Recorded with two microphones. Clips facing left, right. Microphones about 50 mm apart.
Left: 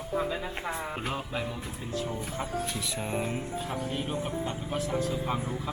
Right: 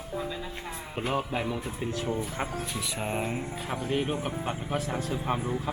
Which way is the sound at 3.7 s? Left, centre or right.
Right.